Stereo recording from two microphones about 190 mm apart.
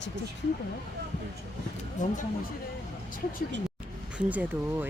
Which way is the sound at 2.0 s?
40° left (ahead or behind).